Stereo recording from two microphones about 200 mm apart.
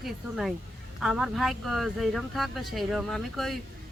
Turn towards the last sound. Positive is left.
turn(degrees=0)  # may be behind; listen again after turning